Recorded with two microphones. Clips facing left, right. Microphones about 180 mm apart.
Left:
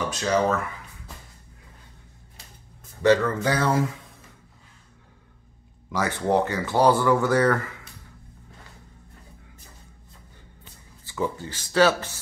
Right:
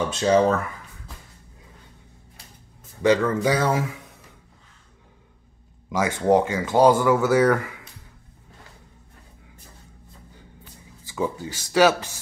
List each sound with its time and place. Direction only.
0.1 s speech: 25° right (ahead or behind)
3.0 s speech: 15° right (ahead or behind)
5.9 s speech: 15° right (ahead or behind)
10.6 s a sound: 10° right (ahead or behind)